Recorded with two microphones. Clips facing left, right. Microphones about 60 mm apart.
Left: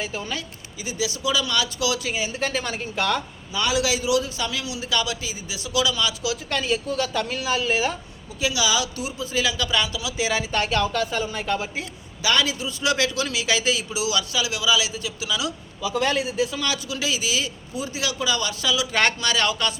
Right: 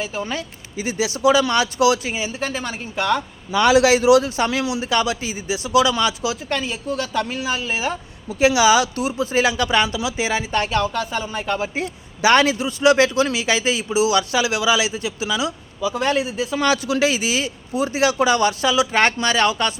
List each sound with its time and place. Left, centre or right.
0.0 s speech: centre
0.8 s a man's voice: right
2.0 s speech: centre
3.5 s a man's voice: right
6.5 s speech: centre
8.4 s a man's voice: right
10.2 s speech: centre
12.2 s a man's voice: right
15.8 s speech: right
16.5 s speech: right
16.7 s a man's voice: right
17.8 s a man's voice: right
18.9 s speech: right